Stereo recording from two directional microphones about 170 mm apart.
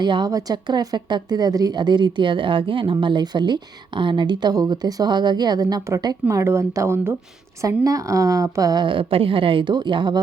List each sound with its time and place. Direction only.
0.0 s a woman's voice: 25° right (ahead or behind)